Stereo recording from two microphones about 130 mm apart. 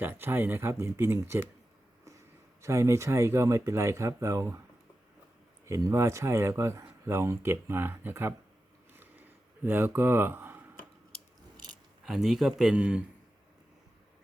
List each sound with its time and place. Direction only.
0.0 s speech: 15° right (ahead or behind)
2.6 s speech: 20° right (ahead or behind)
5.6 s speech: 20° right (ahead or behind)
8.9 s a sound: 15° right (ahead or behind)
9.6 s speech: 15° right (ahead or behind)
12.0 s a man's voice: 5° right (ahead or behind)